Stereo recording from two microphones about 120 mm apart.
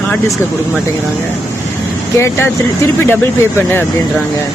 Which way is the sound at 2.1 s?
25° left (ahead or behind).